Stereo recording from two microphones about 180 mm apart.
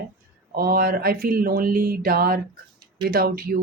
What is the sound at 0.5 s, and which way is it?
Speech, 55° right (ahead or behind).